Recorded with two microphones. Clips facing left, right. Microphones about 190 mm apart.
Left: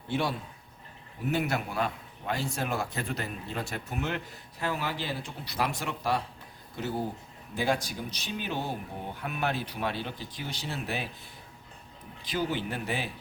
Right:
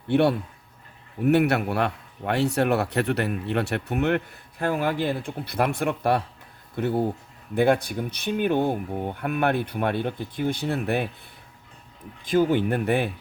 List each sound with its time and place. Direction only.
0.1 s a man's voice: 60° right (ahead or behind)
12.2 s speech: 50° right (ahead or behind)